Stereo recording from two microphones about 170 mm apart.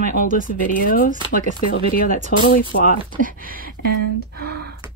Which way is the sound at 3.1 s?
55° right (ahead or behind).